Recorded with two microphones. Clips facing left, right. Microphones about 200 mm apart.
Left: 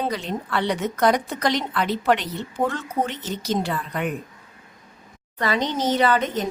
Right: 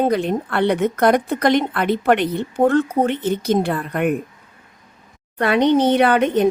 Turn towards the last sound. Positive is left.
turn(degrees=-65)  # may be behind; listen again after turning